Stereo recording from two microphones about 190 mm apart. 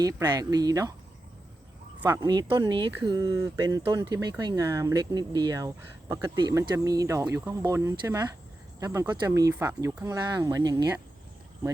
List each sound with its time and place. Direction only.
0.0 s speech: 20° right (ahead or behind)
2.0 s speech: 15° right (ahead or behind)